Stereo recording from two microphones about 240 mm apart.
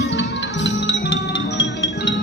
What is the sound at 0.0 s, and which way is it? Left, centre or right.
Music, left.